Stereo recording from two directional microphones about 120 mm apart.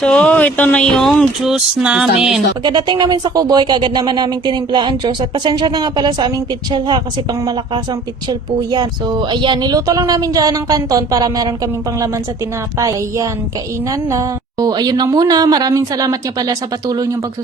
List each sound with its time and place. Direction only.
0.0 s speech: 10° left (ahead or behind)
2.6 s speech: 40° right (ahead or behind)
8.3 s a woman's voice: 35° right (ahead or behind)